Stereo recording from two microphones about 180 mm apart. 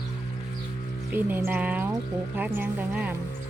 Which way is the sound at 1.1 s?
10° right (ahead or behind).